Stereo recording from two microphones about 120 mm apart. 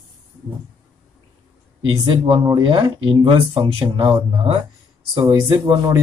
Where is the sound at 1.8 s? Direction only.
40° right (ahead or behind).